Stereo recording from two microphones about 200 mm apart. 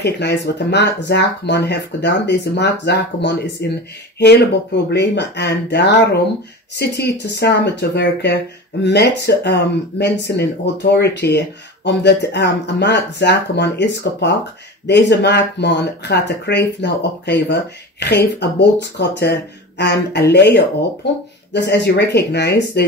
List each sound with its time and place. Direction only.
0.0 s speech: 60° left (ahead or behind)